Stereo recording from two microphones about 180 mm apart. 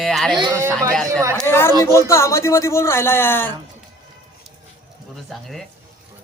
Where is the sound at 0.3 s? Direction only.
15° right (ahead or behind).